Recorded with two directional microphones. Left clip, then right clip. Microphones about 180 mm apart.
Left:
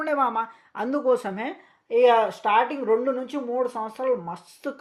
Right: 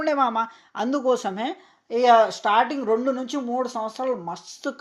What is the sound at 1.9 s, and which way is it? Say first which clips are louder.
Speech: right 2 dB; 40° right (ahead or behind).